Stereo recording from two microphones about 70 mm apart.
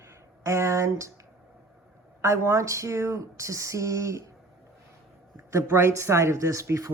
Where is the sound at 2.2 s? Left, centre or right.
Right.